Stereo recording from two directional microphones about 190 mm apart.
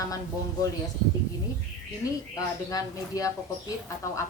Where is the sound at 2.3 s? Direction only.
20° left (ahead or behind).